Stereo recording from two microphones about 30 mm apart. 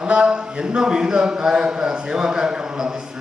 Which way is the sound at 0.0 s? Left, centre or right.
Right.